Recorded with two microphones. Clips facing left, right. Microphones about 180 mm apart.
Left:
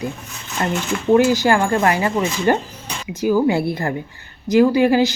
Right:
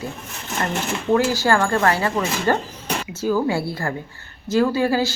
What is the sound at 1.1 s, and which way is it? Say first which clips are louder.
A woman's voice: left 4 dB; 20° left (ahead or behind).